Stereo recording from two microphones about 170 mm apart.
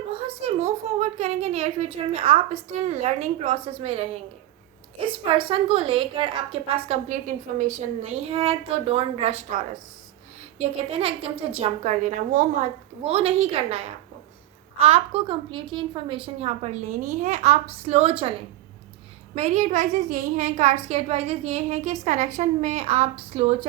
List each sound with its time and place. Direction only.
0.1 s a woman's voice: 35° right (ahead or behind)
8.3 s a woman's voice: 35° right (ahead or behind); by 12.6 s 50° right (ahead or behind)
13.0 s a woman's voice: 35° right (ahead or behind)